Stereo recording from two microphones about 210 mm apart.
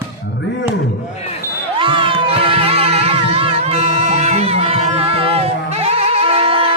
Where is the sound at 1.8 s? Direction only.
25° right (ahead or behind).